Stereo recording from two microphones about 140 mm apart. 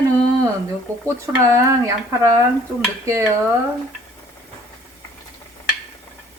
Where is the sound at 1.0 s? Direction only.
20° right (ahead or behind).